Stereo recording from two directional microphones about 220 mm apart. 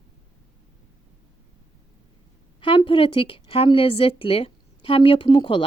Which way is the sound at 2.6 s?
20° left (ahead or behind).